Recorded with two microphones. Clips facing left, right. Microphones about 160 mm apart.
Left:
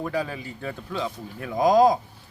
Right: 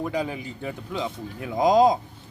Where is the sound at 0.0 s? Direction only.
20° right (ahead or behind).